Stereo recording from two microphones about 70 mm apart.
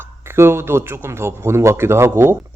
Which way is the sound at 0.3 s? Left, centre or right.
Right.